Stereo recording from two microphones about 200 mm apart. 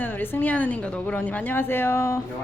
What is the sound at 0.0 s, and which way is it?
Speech, 10° left (ahead or behind).